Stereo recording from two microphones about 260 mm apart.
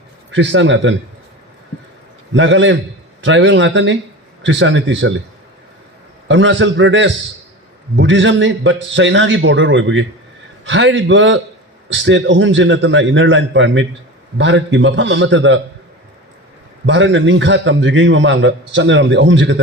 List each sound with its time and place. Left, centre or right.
0.3 s a man's voice: right
2.3 s a man's voice: right
6.2 s a man's voice: right
16.8 s a man's voice: right